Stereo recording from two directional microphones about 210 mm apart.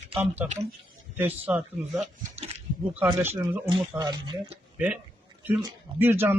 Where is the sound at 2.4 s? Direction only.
30° right (ahead or behind).